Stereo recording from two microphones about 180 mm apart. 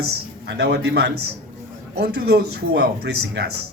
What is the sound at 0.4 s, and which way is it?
Speech, 70° right (ahead or behind).